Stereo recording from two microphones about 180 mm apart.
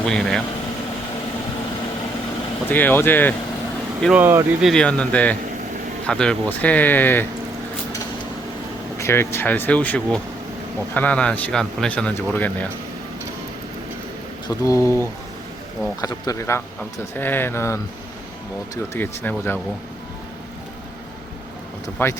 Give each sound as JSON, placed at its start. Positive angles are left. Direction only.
{"t": 0.0, "sound": "speech", "side_deg": 5}
{"t": 2.6, "sound": "speech", "side_deg": 10}
{"t": 4.0, "sound": "speech", "side_deg": -10}
{"t": 4.6, "sound": "speech", "side_deg": 5}
{"t": 9.0, "sound": "speech", "side_deg": 15}
{"t": 14.4, "sound": "speech", "side_deg": 20}
{"t": 22.0, "sound": "speech", "side_deg": 10}